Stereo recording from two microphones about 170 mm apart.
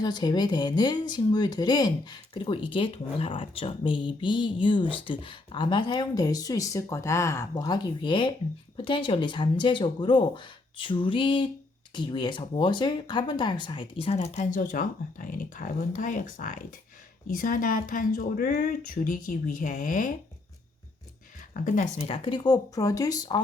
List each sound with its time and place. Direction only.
0.0 s speech: 25° left (ahead or behind); by 20.1 s 50° left (ahead or behind)
21.5 s speech: 50° left (ahead or behind); by 23.4 s 20° left (ahead or behind)